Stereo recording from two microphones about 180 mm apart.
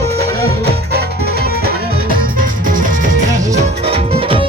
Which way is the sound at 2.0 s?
50° right (ahead or behind).